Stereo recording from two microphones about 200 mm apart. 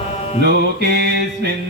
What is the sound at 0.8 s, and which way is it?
Music, 55° right (ahead or behind).